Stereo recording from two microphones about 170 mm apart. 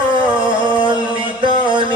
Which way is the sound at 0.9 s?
30° right (ahead or behind).